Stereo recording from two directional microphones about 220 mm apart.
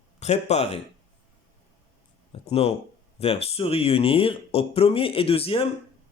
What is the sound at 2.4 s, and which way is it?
Speech, 25° left (ahead or behind).